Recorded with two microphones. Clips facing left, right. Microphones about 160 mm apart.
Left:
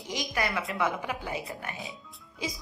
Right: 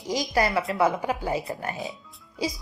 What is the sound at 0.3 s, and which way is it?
A woman's voice, 35° right (ahead or behind).